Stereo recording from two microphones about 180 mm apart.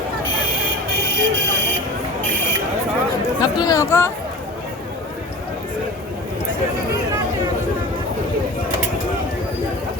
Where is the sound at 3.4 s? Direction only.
20° left (ahead or behind).